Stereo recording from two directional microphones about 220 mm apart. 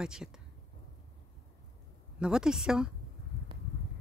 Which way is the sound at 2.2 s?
5° right (ahead or behind).